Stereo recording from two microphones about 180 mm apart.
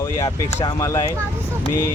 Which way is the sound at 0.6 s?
20° left (ahead or behind).